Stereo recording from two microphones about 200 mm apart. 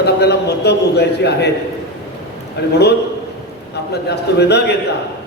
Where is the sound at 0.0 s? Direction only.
55° left (ahead or behind).